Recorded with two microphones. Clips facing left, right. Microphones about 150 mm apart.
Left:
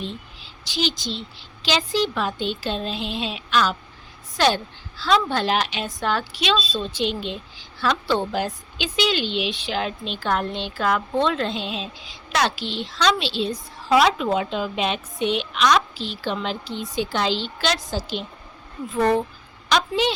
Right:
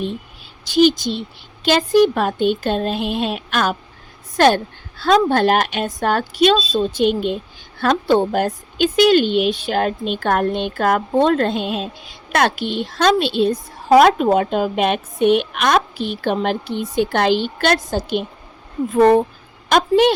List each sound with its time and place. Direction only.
0.6 s a woman's voice: 50° right (ahead or behind)